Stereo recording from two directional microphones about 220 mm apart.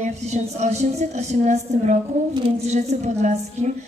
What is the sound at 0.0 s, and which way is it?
A woman's voice, 30° right (ahead or behind).